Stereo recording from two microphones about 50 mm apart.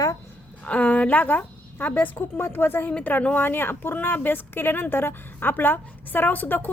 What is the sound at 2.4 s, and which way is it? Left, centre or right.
A woman's voice, left.